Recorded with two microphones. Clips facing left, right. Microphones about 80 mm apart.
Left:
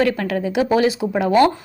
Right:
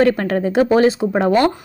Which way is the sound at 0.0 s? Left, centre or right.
Right.